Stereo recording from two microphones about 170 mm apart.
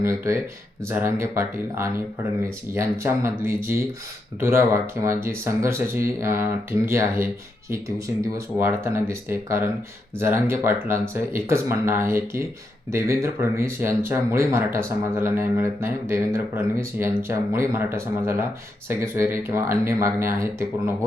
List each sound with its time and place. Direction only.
0.0 s speech: 15° right (ahead or behind)